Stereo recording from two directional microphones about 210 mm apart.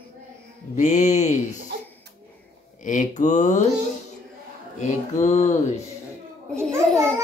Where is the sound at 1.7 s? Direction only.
50° right (ahead or behind).